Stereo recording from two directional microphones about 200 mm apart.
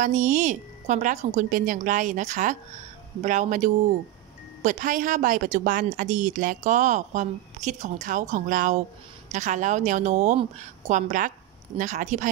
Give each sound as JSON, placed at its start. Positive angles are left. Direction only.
{"t": 0.0, "sound": "a woman's voice", "side_deg": -40}